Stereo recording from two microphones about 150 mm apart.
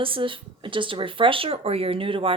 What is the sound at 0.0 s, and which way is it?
Speech, 35° right (ahead or behind).